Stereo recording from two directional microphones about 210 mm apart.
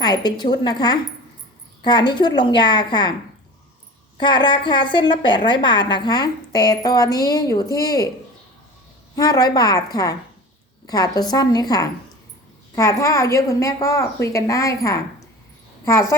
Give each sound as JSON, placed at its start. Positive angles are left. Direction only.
{"t": 0.0, "sound": "a woman's voice", "side_deg": 20}
{"t": 4.2, "sound": "a woman's voice", "side_deg": 20}
{"t": 9.1, "sound": "a woman's voice", "side_deg": 20}